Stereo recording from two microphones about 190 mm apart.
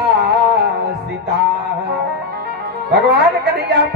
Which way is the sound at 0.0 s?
60° right (ahead or behind).